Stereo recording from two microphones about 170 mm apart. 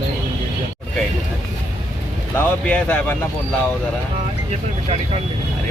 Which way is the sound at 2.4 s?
10° left (ahead or behind).